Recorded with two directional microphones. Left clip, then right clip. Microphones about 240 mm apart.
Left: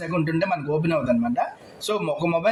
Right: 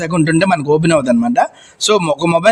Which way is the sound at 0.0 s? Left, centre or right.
Right.